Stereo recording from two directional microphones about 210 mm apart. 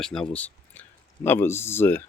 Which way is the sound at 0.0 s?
Centre (ahead or behind).